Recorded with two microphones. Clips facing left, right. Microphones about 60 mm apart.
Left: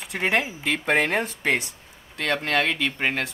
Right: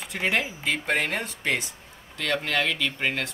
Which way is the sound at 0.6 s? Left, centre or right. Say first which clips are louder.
Left 3 dB; left.